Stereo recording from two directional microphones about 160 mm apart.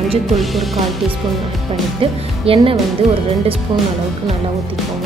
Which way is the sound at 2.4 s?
35° right (ahead or behind).